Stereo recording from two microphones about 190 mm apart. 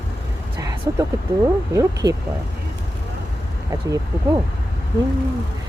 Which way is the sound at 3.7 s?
20° right (ahead or behind).